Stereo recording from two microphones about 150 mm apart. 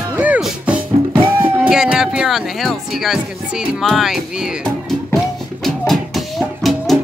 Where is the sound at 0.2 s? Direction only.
10° right (ahead or behind).